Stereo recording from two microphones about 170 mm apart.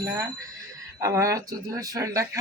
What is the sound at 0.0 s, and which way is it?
Speech, 15° right (ahead or behind).